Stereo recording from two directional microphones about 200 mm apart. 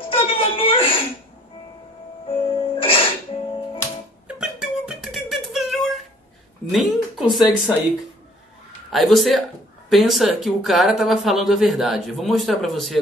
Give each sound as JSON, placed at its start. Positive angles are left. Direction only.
{"t": 0.1, "sound": "whimper", "side_deg": 30}
{"t": 2.2, "sound": "music", "side_deg": 25}
{"t": 4.4, "sound": "music", "side_deg": -5}
{"t": 6.7, "sound": "speech", "side_deg": 0}
{"t": 8.9, "sound": "speech", "side_deg": 0}